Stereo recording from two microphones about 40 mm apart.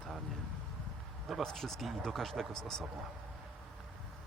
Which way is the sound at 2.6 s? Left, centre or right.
Centre.